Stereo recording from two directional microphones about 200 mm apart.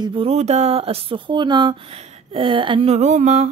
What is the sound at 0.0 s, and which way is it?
A woman's voice, 25° right (ahead or behind).